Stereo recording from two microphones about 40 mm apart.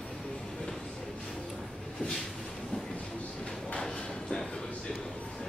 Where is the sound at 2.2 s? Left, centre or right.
Centre.